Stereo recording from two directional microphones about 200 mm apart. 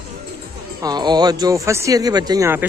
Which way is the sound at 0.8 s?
20° right (ahead or behind).